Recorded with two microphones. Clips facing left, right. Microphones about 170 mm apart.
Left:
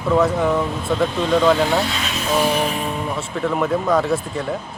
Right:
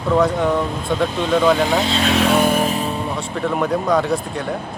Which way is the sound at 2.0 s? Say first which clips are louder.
Right 8 dB; 70° right (ahead or behind).